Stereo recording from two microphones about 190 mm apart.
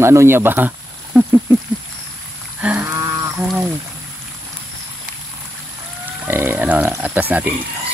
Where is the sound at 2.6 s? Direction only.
10° right (ahead or behind).